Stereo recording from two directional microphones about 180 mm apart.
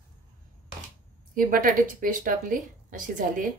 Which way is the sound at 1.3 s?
50° right (ahead or behind).